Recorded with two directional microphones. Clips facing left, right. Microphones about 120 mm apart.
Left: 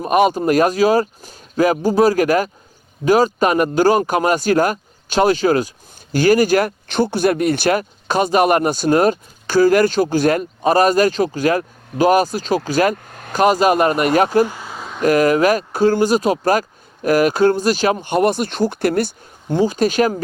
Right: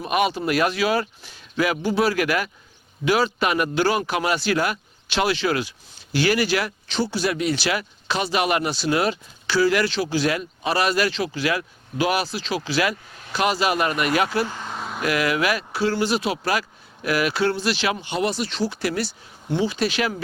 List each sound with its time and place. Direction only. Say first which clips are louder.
0.0 s speech: left 7 dB; 40° left (ahead or behind)
14.4 s a sound: left 4 dB; 10° left (ahead or behind)
15.0 s speech: left 9 dB; 45° left (ahead or behind)